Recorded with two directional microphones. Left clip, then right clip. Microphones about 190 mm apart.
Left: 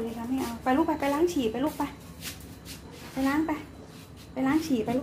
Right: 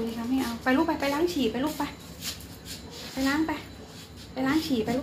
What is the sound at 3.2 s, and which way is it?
Speech, 15° left (ahead or behind).